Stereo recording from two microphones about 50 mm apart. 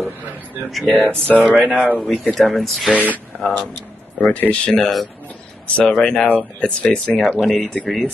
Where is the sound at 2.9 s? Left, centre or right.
Right.